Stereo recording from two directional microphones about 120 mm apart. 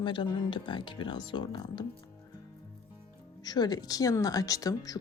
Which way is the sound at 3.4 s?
35° left (ahead or behind).